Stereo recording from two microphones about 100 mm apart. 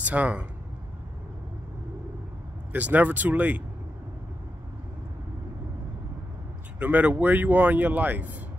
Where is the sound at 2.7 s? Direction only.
15° right (ahead or behind).